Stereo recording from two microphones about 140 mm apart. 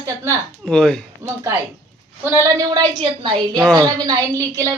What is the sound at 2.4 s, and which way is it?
Speech, 30° right (ahead or behind).